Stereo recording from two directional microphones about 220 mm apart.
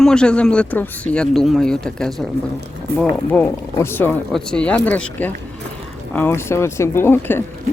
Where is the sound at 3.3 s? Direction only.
10° left (ahead or behind).